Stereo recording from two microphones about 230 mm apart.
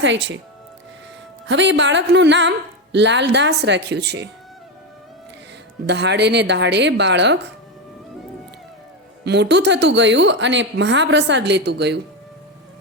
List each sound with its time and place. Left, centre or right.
0.0 s speech: right
1.5 s speech: right
5.8 s speech: right
9.2 s speech: right